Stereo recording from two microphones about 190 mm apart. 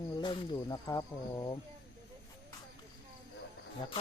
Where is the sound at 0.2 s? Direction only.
25° left (ahead or behind).